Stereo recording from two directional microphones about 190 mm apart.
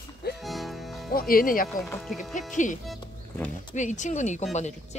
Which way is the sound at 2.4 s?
40° left (ahead or behind).